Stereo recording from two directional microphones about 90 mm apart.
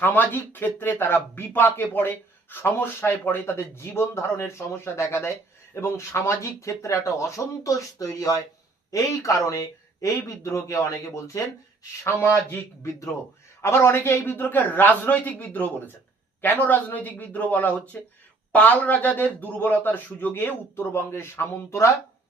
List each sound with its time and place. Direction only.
0.0 s speech: 20° left (ahead or behind)